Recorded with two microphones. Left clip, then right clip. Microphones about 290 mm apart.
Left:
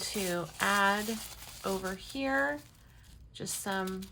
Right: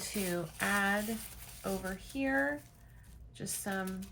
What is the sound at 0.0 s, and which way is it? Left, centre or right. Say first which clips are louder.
Speech: left 3 dB; centre.